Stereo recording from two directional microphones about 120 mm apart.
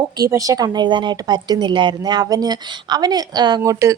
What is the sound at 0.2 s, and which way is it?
A woman's voice, 30° right (ahead or behind).